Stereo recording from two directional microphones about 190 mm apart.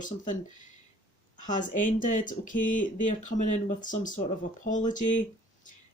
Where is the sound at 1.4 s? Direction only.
40° left (ahead or behind).